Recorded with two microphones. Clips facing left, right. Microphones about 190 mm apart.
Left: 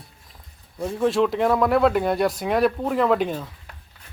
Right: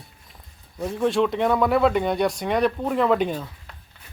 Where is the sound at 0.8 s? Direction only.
Centre (ahead or behind).